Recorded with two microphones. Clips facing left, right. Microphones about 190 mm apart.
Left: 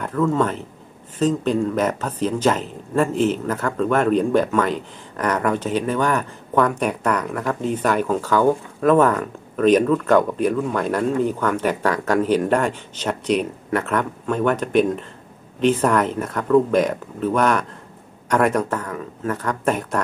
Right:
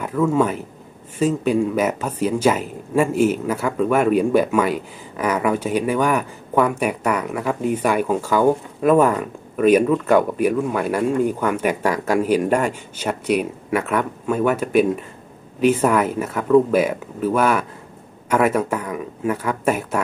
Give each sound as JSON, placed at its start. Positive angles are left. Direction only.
{"t": 0.0, "sound": "speech", "side_deg": -10}